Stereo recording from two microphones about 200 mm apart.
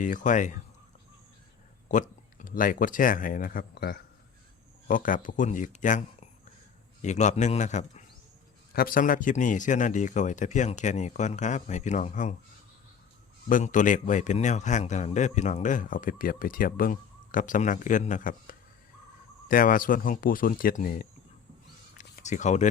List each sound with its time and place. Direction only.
0.0 s a man's voice: 40° left (ahead or behind)
1.9 s a man's voice: 40° left (ahead or behind)
13.5 s a man's voice: 40° left (ahead or behind)
22.3 s a man's voice: 35° left (ahead or behind)